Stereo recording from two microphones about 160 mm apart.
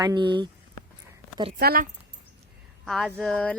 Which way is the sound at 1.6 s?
70° right (ahead or behind).